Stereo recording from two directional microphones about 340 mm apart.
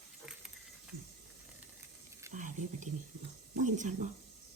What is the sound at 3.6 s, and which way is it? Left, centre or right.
Speech, right.